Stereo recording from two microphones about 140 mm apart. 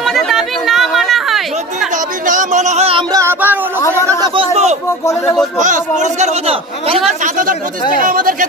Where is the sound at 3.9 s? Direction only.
20° left (ahead or behind).